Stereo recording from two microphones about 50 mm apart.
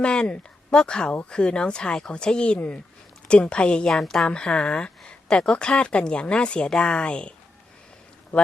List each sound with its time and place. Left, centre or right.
0.0 s speech: centre
4.0 s speech: centre
4.3 s speech: left